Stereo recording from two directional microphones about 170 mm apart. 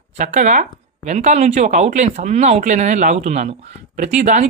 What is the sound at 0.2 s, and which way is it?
Speech, 45° right (ahead or behind).